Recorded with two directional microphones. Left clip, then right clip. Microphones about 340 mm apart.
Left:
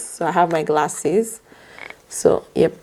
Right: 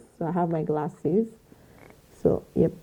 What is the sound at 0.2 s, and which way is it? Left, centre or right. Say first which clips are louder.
Speech: left 10 dB; centre.